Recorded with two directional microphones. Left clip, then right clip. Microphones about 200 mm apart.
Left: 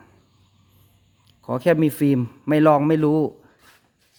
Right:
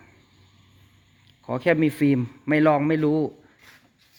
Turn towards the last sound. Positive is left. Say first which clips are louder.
# left 3 dB
turn(degrees=30)  # may be behind; listen again after turning